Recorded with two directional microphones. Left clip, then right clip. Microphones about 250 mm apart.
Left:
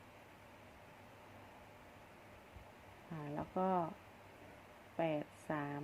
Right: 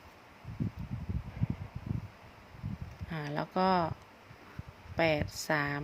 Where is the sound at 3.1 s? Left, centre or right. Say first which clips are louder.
Right 8 dB; right.